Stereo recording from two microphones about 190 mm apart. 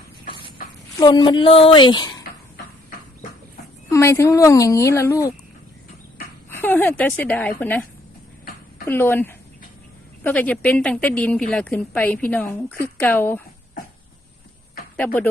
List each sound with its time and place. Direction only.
0.9 s speech: 20° left (ahead or behind)
3.9 s a woman's voice: 15° left (ahead or behind)
6.5 s a woman's voice: 10° left (ahead or behind)
8.9 s a woman's voice: 10° left (ahead or behind)
14.9 s a woman's voice: 10° left (ahead or behind)